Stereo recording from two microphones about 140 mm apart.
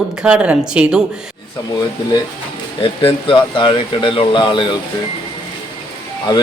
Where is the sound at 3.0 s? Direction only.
35° left (ahead or behind).